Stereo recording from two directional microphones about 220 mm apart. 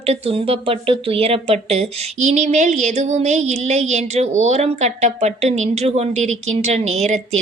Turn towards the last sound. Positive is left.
turn(degrees=-30)  # may be behind; listen again after turning